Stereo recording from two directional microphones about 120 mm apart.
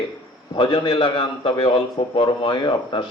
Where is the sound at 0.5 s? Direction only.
45° left (ahead or behind).